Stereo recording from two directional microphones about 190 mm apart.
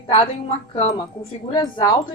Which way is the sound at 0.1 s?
30° left (ahead or behind).